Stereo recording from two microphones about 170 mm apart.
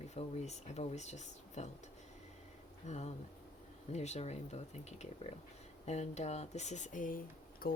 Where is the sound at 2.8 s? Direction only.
40° left (ahead or behind).